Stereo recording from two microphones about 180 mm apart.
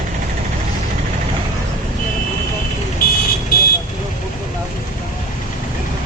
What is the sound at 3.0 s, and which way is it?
Vehicle, 55° left (ahead or behind).